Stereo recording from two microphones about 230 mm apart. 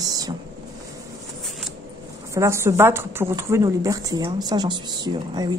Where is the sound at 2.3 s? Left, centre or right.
Centre.